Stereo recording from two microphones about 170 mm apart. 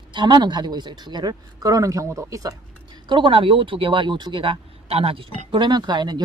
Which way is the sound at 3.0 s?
30° right (ahead or behind).